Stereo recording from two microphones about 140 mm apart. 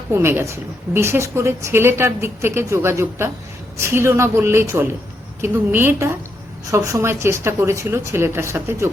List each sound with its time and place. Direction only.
0.1 s a woman's voice: 20° right (ahead or behind)